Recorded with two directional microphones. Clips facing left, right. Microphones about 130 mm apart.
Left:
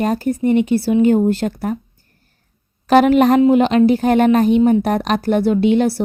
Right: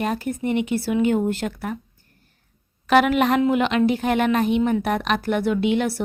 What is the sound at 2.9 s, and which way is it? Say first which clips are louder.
Speech: left 6 dB; 35° left (ahead or behind).